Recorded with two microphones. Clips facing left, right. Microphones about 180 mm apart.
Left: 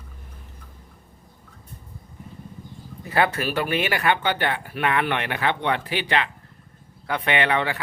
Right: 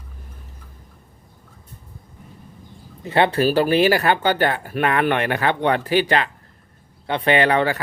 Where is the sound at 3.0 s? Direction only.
25° right (ahead or behind); by 6.3 s 45° right (ahead or behind).